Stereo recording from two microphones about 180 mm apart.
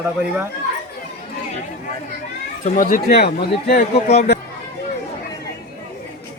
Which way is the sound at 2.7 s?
50° left (ahead or behind).